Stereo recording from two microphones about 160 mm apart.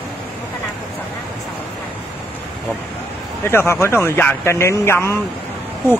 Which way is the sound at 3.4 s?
15° left (ahead or behind).